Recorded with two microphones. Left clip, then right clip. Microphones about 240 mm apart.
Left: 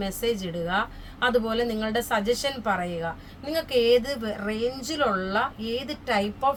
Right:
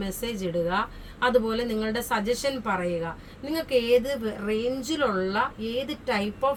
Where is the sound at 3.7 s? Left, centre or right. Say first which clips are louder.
Left 1 dB; centre.